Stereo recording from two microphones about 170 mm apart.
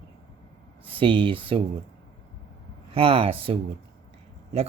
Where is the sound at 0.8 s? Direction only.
30° right (ahead or behind).